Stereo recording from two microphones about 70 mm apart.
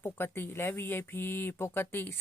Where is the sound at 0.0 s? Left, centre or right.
Left.